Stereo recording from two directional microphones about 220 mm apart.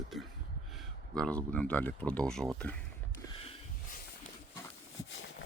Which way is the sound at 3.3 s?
25° left (ahead or behind).